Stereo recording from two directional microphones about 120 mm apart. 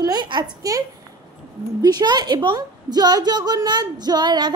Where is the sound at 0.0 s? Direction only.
35° right (ahead or behind).